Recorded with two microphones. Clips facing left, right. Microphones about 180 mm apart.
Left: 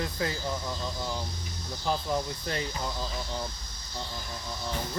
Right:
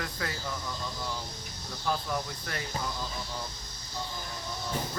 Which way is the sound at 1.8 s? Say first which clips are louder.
Left 3 dB; 25° left (ahead or behind).